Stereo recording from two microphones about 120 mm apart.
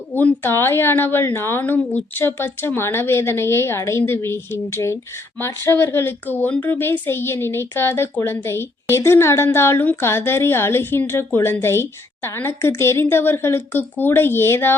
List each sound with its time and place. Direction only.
0.1 s a woman's voice: 15° left (ahead or behind)